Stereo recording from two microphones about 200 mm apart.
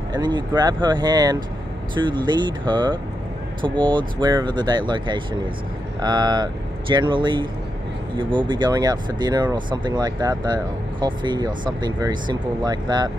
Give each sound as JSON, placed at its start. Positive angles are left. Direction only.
{"t": 0.1, "sound": "speech", "side_deg": -20}